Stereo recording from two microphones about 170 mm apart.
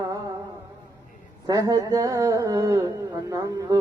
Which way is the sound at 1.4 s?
20° right (ahead or behind).